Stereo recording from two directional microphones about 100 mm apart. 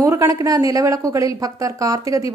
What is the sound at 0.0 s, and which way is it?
A woman's voice, 30° right (ahead or behind).